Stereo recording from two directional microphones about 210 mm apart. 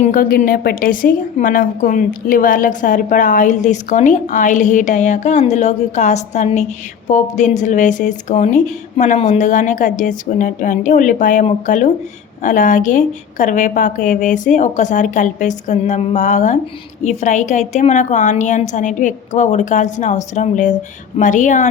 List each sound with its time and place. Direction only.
0.0 s a woman's voice: 40° left (ahead or behind)